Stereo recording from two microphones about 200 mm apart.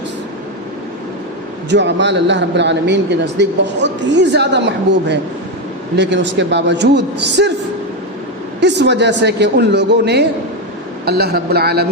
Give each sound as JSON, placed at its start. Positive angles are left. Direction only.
{"t": 1.7, "sound": "speech", "side_deg": -60}
{"t": 8.6, "sound": "a man's voice", "side_deg": -60}